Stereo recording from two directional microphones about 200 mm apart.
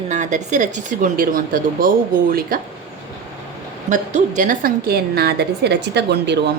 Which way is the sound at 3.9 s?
40° right (ahead or behind).